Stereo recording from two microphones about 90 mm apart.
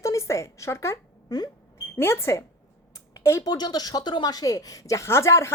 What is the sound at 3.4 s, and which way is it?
Speech, 50° left (ahead or behind).